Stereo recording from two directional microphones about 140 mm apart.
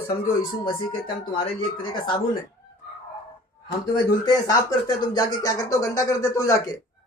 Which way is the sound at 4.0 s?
30° left (ahead or behind).